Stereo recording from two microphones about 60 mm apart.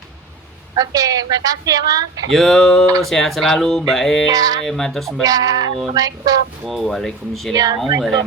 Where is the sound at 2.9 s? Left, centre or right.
Right.